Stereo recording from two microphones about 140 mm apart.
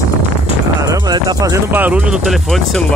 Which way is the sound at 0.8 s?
30° right (ahead or behind).